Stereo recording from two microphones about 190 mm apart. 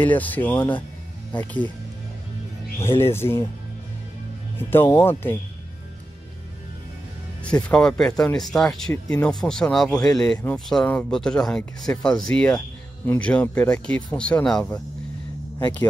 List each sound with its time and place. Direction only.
0.0 s speech: 10° left (ahead or behind)
3.0 s speech: 10° left (ahead or behind)
4.6 s speech: 10° left (ahead or behind)
7.6 s speech: 5° left (ahead or behind)
15.6 s speech: 20° left (ahead or behind)